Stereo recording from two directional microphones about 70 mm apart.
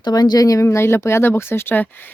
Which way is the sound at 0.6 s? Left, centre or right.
Left.